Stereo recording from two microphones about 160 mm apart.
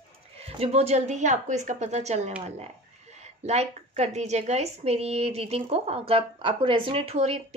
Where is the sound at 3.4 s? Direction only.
45° right (ahead or behind).